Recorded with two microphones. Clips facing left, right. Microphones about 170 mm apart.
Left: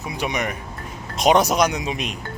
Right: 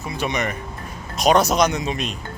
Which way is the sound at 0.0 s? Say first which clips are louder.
Right 1 dB; 15° left (ahead or behind).